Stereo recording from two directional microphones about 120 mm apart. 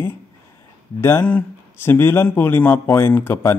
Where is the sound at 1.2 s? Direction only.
15° left (ahead or behind).